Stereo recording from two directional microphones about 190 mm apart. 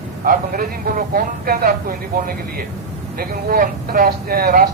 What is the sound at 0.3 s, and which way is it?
Speech, 50° right (ahead or behind).